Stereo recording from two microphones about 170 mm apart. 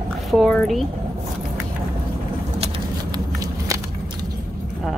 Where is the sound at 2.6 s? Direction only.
30° right (ahead or behind).